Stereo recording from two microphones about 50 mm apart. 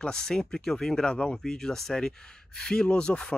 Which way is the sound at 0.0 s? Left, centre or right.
Centre.